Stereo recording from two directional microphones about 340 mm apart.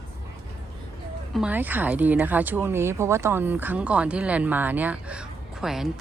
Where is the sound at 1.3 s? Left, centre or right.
Centre.